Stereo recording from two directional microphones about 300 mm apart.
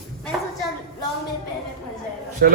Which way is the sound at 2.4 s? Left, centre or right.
Right.